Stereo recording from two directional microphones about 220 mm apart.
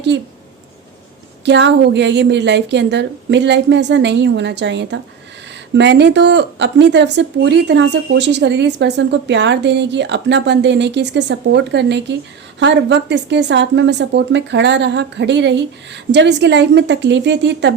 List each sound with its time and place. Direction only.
0.1 s speech: 55° right (ahead or behind)
1.5 s speech: 55° right (ahead or behind)